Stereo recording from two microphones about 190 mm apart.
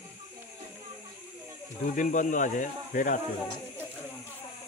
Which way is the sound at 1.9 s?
40° left (ahead or behind).